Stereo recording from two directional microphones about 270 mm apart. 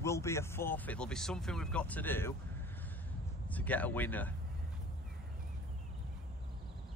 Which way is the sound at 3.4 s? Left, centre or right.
Centre.